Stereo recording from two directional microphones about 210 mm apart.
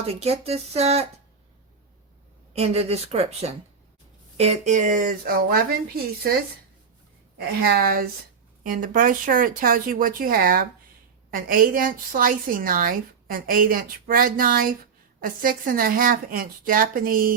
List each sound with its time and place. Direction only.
0.1 s a woman's voice: 30° right (ahead or behind)
2.5 s a woman's voice: 30° right (ahead or behind); by 6.3 s 45° right (ahead or behind)
7.3 s speech: 45° right (ahead or behind)